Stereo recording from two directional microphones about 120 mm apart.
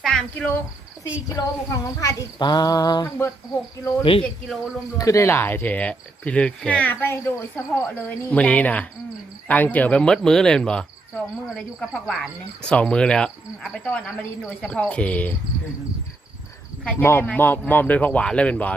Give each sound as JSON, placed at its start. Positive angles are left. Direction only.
{"t": 0.0, "sound": "speech", "side_deg": 5}
{"t": 1.3, "sound": "speech", "side_deg": 30}
{"t": 2.4, "sound": "a sound", "side_deg": 35}
{"t": 4.1, "sound": "speech", "side_deg": 45}
{"t": 4.9, "sound": "cricket", "side_deg": 25}
{"t": 16.8, "sound": "cricket", "side_deg": 15}